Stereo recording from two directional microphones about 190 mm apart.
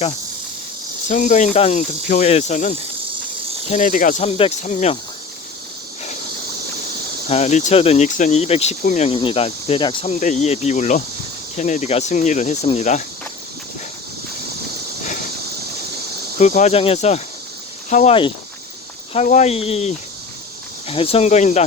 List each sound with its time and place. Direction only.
1.0 s speech: 40° left (ahead or behind)
7.3 s speech: 35° left (ahead or behind)
16.4 s speech: 40° left (ahead or behind)